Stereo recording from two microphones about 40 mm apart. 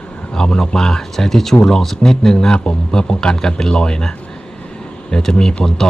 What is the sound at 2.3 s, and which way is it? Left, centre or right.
A man's voice, centre.